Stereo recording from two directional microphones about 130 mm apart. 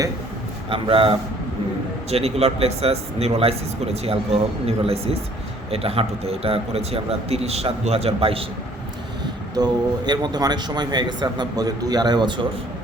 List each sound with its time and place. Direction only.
0.7 s a man's voice: 45° right (ahead or behind)
9.6 s a man's voice: 35° right (ahead or behind)